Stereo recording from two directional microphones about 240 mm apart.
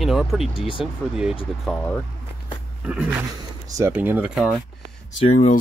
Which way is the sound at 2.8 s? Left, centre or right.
Centre.